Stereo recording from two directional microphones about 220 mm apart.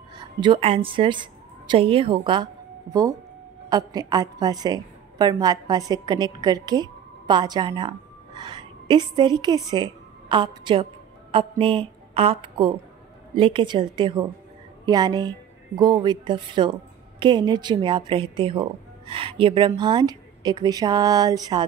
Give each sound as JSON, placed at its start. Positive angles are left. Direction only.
{"t": 0.2, "sound": "a woman's voice", "side_deg": -20}